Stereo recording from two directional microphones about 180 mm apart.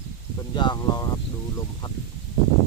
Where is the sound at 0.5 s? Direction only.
25° left (ahead or behind).